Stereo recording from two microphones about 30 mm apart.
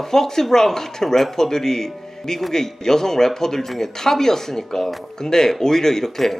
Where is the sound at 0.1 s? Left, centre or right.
Centre.